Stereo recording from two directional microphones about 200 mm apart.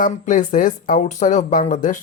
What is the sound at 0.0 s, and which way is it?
Speech, 40° left (ahead or behind).